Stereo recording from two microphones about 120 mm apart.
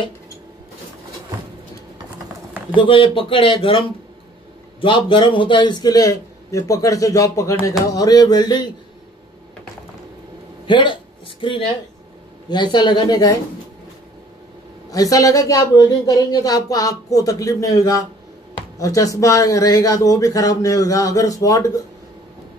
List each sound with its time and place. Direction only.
2.7 s a man's voice: 45° left (ahead or behind)
10.7 s speech: 40° left (ahead or behind)
12.7 s a man's voice: 40° left (ahead or behind)
14.9 s speech: 30° left (ahead or behind)